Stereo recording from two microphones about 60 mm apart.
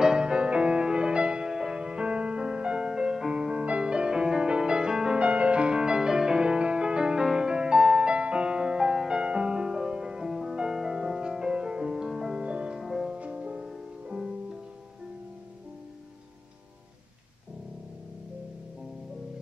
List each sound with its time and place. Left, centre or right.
0.0 s music: centre
13.2 s music: centre